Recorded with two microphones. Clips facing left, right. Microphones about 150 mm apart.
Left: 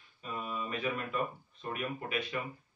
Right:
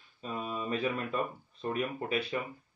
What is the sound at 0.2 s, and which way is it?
Mantra, 30° right (ahead or behind).